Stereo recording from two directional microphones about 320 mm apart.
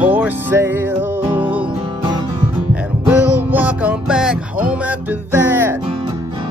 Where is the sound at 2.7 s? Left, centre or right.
Centre.